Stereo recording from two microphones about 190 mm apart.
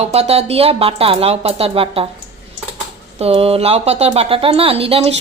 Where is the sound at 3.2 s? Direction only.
30° right (ahead or behind).